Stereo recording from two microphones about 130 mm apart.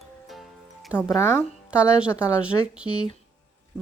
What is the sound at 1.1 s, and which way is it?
Speech, 20° left (ahead or behind).